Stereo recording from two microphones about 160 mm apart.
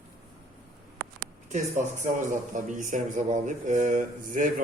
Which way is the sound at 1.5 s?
50° right (ahead or behind).